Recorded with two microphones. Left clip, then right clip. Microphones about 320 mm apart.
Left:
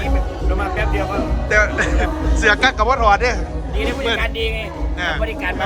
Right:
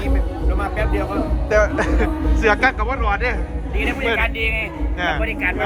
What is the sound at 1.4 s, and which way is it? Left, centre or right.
Speech, centre.